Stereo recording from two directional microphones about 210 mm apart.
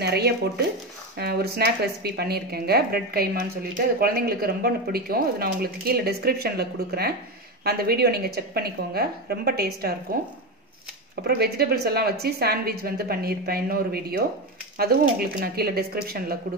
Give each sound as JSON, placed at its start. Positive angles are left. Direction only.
{"t": 0.0, "sound": "a woman's voice", "side_deg": -50}
{"t": 11.2, "sound": "a woman's voice", "side_deg": -50}